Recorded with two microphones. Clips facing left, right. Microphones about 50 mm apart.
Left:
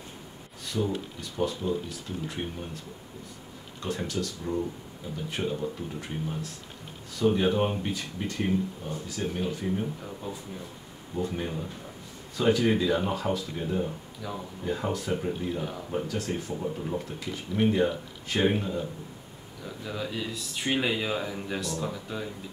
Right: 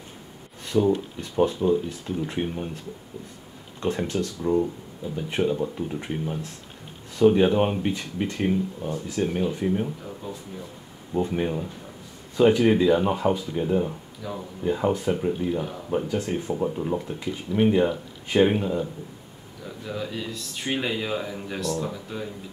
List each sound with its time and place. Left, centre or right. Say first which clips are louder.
0.7 s speech: right 8 dB; right
3.8 s speech: right 6 dB; right
10.2 s speech: right 1 dB; centre
11.2 s speech: right 6 dB; right
14.2 s speech: right 3 dB; centre
14.6 s speech: right 7 dB; right
15.1 s speech: right 5 dB; centre
15.9 s speech: right 6 dB; right
19.6 s speech: right 2 dB; centre